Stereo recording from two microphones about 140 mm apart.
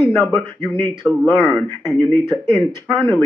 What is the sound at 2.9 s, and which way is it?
Speech, 15° left (ahead or behind).